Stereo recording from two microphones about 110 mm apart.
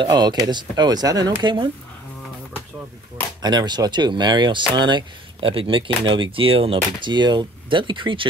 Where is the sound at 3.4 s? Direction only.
40° right (ahead or behind).